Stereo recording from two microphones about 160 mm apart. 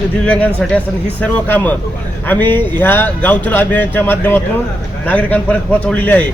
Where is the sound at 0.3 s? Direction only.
10° left (ahead or behind).